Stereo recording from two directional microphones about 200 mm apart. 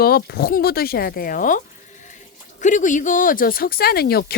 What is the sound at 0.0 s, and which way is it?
Speech, 50° left (ahead or behind).